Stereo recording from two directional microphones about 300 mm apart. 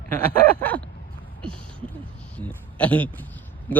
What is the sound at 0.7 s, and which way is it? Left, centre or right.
Speech, centre.